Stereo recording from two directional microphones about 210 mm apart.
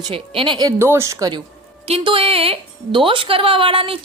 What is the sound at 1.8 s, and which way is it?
Speech, 25° right (ahead or behind).